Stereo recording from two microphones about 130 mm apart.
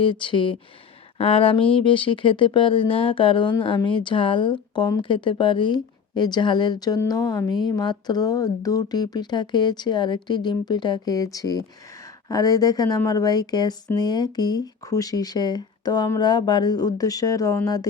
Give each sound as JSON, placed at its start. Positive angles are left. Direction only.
{"t": 0.0, "sound": "speech", "side_deg": 40}